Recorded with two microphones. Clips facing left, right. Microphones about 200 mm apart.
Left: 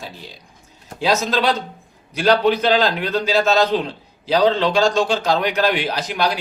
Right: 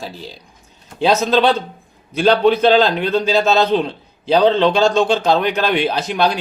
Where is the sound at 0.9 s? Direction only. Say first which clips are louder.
Right 4 dB; 25° right (ahead or behind).